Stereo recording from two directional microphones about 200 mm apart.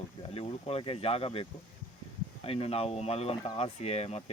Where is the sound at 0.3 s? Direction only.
30° left (ahead or behind).